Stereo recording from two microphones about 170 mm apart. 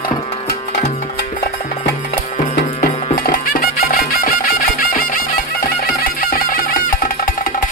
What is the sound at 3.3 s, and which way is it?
Music, 60° left (ahead or behind).